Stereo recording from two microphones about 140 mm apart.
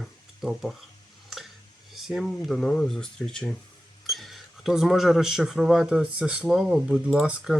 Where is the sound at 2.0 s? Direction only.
Centre (ahead or behind).